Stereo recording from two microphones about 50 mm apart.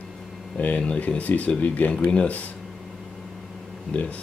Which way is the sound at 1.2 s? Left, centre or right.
Left.